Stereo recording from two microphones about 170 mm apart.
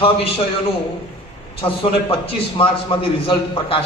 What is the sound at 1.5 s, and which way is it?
A man's voice, 35° left (ahead or behind).